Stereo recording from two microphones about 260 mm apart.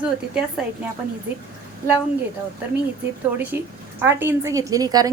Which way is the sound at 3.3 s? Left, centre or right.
Centre.